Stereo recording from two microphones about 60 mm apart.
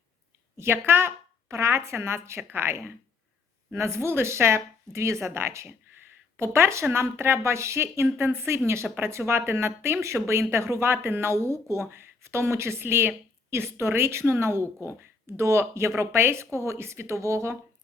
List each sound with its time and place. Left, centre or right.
0.5 s a woman's voice: right
1.5 s a woman's voice: right